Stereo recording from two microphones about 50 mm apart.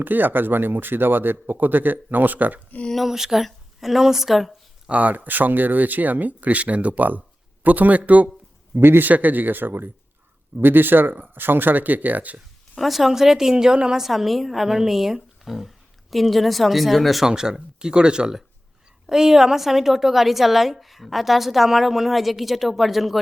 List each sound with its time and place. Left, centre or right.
0.0 s speech: right
2.9 s a woman's voice: centre
4.9 s speech: right
8.7 s speech: right
9.0 s speech: right
12.7 s a woman's voice: centre
17.2 s a woman's voice: centre